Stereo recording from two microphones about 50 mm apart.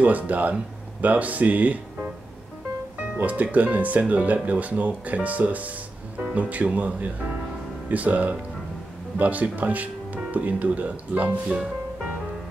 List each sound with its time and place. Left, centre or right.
0.0 s speech: right
3.0 s music: right
3.5 s speech: right